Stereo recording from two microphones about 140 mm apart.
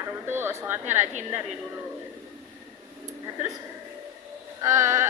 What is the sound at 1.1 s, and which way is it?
Speech, 55° right (ahead or behind).